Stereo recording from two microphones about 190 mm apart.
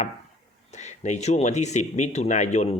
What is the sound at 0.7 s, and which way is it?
Speech, 35° left (ahead or behind).